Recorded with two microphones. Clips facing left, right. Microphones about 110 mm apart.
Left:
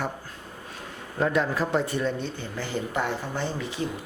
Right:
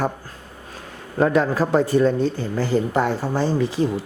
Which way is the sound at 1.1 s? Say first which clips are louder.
Right 6 dB; 45° right (ahead or behind).